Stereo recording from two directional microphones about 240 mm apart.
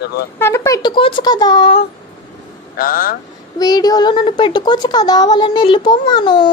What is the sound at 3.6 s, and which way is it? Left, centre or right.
A woman's voice, centre.